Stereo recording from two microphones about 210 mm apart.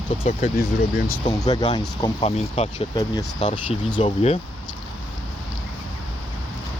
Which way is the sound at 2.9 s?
15° left (ahead or behind).